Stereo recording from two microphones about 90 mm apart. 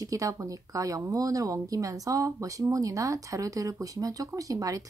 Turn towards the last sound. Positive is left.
turn(degrees=-40)  # may be behind; listen again after turning